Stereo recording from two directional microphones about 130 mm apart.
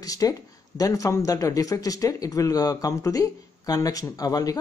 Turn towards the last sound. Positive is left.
turn(degrees=30)  # may be behind; listen again after turning